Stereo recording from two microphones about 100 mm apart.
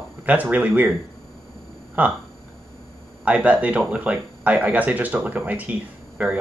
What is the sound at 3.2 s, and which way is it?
Speech, 15° right (ahead or behind).